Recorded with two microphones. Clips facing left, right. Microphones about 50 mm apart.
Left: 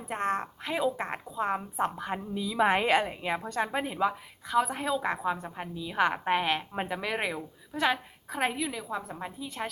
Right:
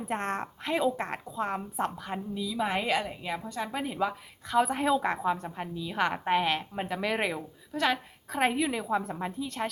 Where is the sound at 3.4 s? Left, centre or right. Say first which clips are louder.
Left 4 dB; left.